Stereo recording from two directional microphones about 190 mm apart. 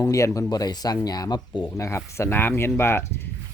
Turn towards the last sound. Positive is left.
turn(degrees=10)  # may be behind; listen again after turning